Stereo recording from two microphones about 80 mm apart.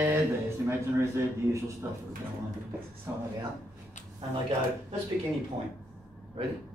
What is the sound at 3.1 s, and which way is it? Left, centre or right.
Speech, right.